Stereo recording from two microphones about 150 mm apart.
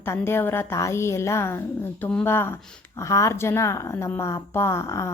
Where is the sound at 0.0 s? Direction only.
15° left (ahead or behind).